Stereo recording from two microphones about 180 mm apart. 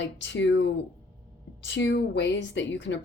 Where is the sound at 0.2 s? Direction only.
85° left.